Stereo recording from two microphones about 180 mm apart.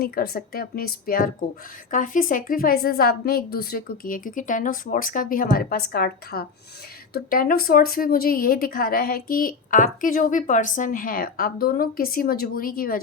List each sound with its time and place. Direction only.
0.0 s a woman's voice: 55° left (ahead or behind)